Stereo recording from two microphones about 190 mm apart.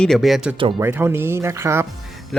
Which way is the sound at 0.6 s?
25° right (ahead or behind).